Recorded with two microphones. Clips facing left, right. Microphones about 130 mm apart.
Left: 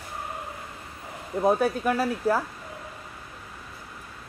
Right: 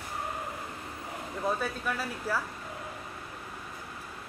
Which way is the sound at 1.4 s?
50° left (ahead or behind).